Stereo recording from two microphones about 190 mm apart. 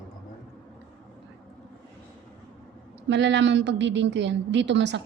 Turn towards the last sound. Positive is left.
turn(degrees=-65)  # may be behind; listen again after turning